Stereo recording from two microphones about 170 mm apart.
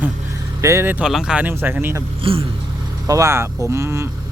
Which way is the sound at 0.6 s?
15° right (ahead or behind).